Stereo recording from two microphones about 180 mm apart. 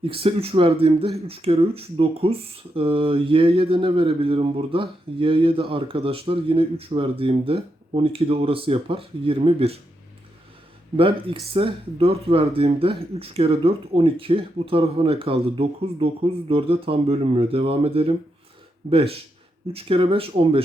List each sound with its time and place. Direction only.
0.0 s speech: 30° right (ahead or behind)
10.9 s speech: 30° right (ahead or behind)